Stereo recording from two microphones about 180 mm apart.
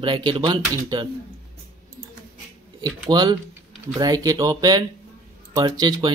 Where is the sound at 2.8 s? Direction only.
25° right (ahead or behind).